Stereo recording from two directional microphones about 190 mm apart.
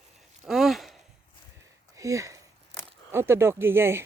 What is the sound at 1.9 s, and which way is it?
Speech, 15° right (ahead or behind).